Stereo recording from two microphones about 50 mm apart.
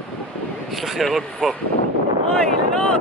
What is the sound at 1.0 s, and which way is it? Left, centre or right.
Speech, centre.